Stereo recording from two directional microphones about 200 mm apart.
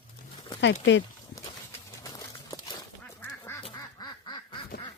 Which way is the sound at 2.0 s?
20° left (ahead or behind).